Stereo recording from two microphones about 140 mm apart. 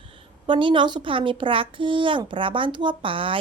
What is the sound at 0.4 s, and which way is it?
A woman's voice, 35° right (ahead or behind).